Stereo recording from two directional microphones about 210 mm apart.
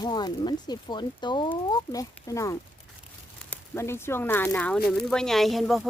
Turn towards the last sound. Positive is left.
turn(degrees=0)  # may be behind; listen again after turning